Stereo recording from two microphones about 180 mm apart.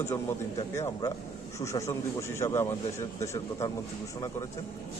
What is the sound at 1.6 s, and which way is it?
A man's voice, 15° left (ahead or behind).